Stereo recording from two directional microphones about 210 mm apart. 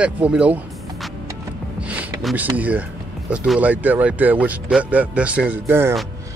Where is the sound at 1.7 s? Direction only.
5° right (ahead or behind).